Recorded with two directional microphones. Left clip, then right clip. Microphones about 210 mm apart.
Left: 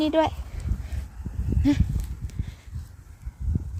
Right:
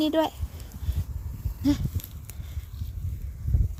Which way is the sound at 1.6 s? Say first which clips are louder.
Left 2 dB; centre (ahead or behind).